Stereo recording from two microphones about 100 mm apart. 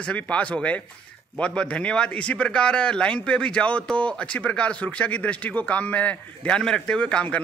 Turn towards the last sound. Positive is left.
turn(degrees=10)  # may be behind; listen again after turning